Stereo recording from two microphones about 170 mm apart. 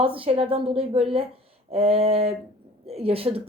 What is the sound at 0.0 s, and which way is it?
A woman's voice, 30° right (ahead or behind).